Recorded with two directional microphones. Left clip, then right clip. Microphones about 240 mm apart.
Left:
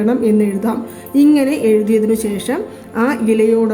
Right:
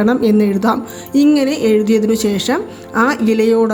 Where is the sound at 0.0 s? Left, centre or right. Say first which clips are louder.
Right 1 dB; right.